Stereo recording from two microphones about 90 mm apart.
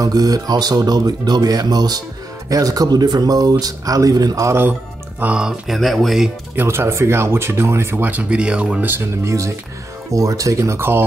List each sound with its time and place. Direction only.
0.0 s speech: 45° right (ahead or behind)
5.2 s speech: 10° right (ahead or behind)
6.5 s speech: 25° right (ahead or behind)